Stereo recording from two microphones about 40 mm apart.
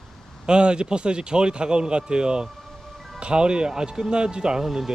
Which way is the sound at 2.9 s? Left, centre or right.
Centre.